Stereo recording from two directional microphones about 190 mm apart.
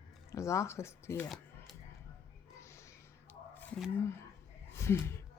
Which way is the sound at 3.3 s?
10° left (ahead or behind).